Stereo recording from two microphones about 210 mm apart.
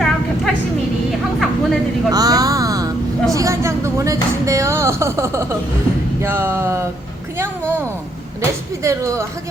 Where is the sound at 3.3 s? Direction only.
15° right (ahead or behind).